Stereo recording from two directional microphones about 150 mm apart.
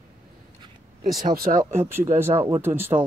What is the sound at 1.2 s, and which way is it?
Speech, 70° right (ahead or behind).